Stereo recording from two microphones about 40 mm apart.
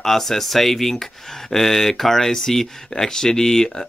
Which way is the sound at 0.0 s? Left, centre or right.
Centre.